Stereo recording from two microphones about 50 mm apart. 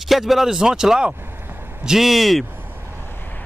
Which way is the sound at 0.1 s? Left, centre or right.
Centre.